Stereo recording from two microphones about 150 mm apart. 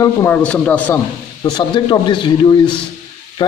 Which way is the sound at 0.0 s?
20° left (ahead or behind).